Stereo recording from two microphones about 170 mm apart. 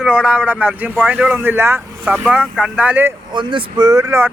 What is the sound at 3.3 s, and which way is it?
Speech, 25° right (ahead or behind).